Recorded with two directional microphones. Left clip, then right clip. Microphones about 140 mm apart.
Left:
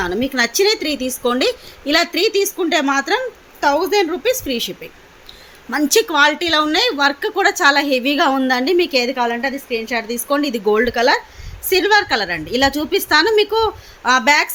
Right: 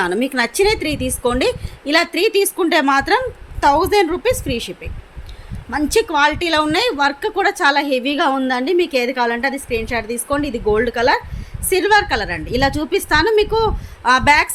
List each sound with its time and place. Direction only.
0.0 s a woman's voice: 20° right (ahead or behind)
9.9 s a woman's voice: 5° right (ahead or behind)